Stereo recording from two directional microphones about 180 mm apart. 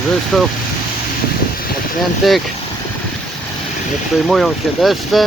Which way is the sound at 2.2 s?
Centre (ahead or behind).